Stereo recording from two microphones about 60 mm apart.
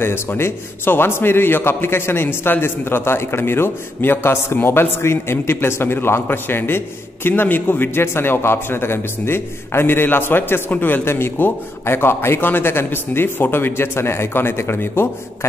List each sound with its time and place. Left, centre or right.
0.0 s a man's voice: left